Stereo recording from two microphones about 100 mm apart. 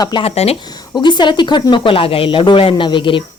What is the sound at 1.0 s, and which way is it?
Speech, 50° left (ahead or behind).